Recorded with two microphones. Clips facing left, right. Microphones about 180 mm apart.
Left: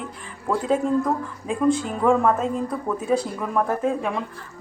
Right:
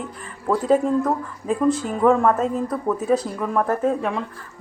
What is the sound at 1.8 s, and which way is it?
A woman's voice, 5° right (ahead or behind).